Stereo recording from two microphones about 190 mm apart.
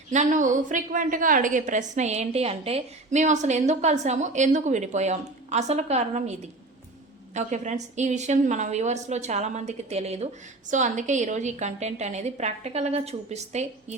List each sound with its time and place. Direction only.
0.1 s a woman's voice: 40° right (ahead or behind)